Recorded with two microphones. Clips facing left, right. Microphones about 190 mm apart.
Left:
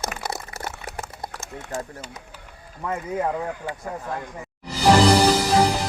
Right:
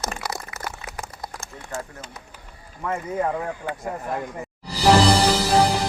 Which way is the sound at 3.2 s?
5° left (ahead or behind).